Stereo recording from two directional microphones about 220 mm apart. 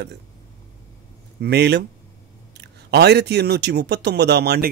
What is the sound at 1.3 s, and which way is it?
Speech, 50° right (ahead or behind).